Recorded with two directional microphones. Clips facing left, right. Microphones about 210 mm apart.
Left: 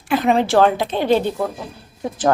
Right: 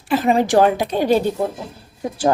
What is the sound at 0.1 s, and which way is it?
A woman's voice, 5° right (ahead or behind).